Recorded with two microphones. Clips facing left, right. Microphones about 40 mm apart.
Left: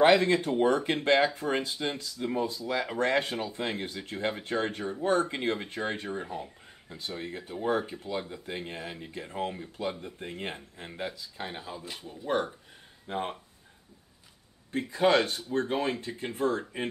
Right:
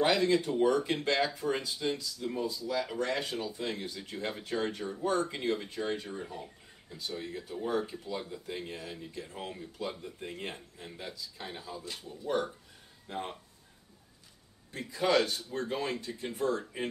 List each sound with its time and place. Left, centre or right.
0.0 s speech: left
11.9 s speech: centre
13.0 s speech: left
14.7 s speech: left